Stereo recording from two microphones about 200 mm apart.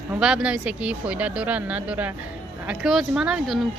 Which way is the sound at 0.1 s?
5° right (ahead or behind).